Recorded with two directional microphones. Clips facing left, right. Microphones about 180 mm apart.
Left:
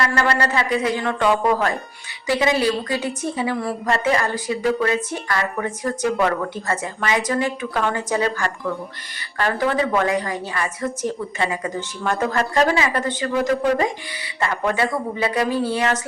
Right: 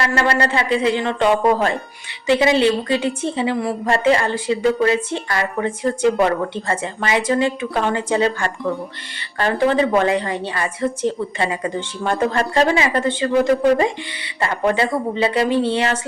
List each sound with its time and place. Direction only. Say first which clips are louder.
0.0 s a woman's voice: right 2 dB; 30° right (ahead or behind)